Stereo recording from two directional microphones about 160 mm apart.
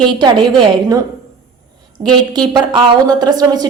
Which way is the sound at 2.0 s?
40° right (ahead or behind).